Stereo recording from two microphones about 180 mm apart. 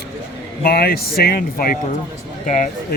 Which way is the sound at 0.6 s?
60° left (ahead or behind).